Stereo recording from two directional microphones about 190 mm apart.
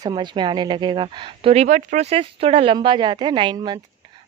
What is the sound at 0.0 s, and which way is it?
A woman's voice, 25° right (ahead or behind).